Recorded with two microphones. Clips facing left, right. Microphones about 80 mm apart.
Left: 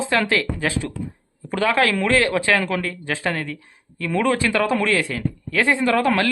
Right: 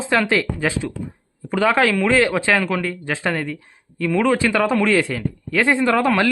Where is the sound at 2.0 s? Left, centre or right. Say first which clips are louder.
Right 2 dB; centre.